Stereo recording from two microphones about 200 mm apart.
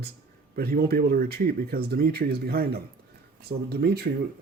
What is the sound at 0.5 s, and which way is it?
Speech, 50° right (ahead or behind).